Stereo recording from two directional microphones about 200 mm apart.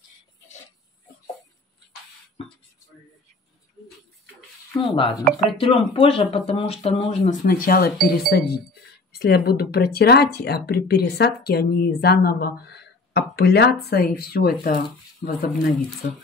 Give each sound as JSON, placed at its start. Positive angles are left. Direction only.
{"t": 4.7, "sound": "speech", "side_deg": 25}
{"t": 5.2, "sound": "speech", "side_deg": 0}
{"t": 5.6, "sound": "speech", "side_deg": 25}
{"t": 7.4, "sound": "speech", "side_deg": 45}